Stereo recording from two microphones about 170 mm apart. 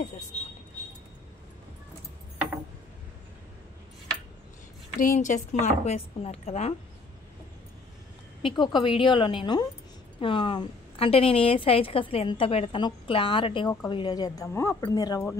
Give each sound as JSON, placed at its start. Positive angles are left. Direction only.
{"t": 4.9, "sound": "speech", "side_deg": 50}
{"t": 8.4, "sound": "a woman's voice", "side_deg": 30}